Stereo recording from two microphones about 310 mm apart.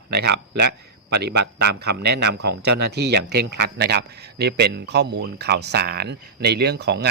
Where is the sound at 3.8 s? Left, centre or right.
Right.